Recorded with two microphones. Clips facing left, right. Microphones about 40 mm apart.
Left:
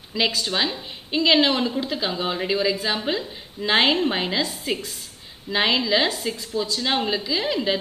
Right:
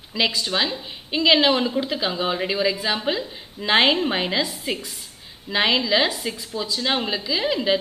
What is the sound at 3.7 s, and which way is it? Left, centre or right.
Speech, centre.